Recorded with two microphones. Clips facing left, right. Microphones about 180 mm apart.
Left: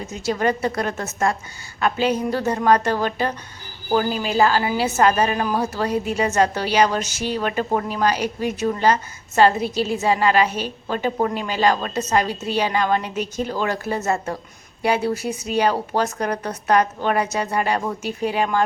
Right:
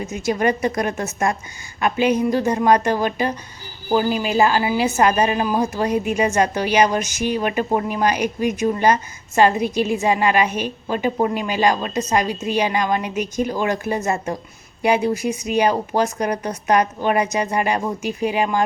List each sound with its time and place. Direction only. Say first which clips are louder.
0.0 s a woman's voice: right 2 dB; 15° right (ahead or behind)